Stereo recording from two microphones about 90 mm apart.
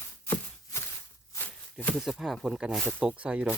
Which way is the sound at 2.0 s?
5° right (ahead or behind).